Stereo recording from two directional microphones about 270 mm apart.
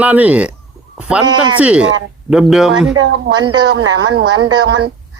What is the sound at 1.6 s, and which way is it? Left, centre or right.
Speech, centre.